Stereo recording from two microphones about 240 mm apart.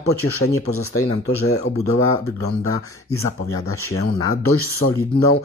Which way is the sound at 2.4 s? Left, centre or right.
Left.